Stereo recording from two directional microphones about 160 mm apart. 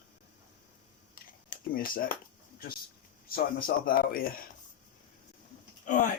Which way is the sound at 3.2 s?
65° left (ahead or behind).